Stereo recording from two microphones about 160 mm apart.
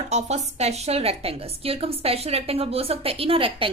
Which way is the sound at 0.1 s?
45° right (ahead or behind).